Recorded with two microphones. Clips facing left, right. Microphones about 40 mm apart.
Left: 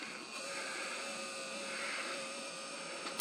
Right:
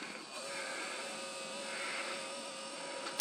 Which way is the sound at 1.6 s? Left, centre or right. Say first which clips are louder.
Right 1 dB; centre.